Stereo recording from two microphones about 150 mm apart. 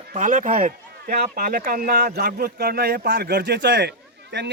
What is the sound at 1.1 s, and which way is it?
Speech, 85° right.